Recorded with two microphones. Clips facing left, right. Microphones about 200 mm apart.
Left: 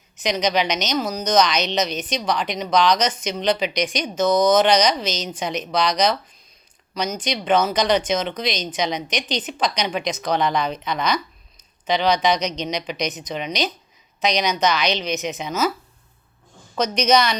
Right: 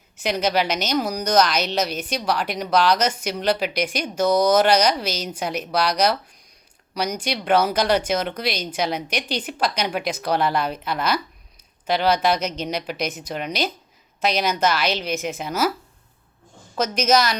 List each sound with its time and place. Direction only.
0.2 s speech: 5° right (ahead or behind)
16.7 s a woman's voice: 5° right (ahead or behind)